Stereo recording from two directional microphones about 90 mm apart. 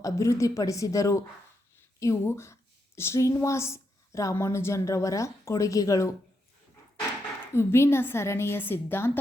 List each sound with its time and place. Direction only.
0.0 s a woman's voice: 35° left (ahead or behind)
7.5 s a woman's voice: 30° left (ahead or behind)